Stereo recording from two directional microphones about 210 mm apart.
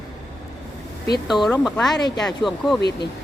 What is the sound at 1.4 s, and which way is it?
Speech, 5° left (ahead or behind).